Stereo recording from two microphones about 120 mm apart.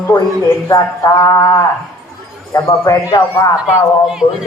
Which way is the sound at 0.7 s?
30° left (ahead or behind).